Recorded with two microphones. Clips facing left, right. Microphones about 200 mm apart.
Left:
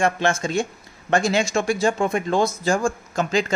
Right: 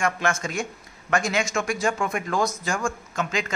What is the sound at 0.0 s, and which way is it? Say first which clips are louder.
Speech: left 4 dB; 30° left (ahead or behind).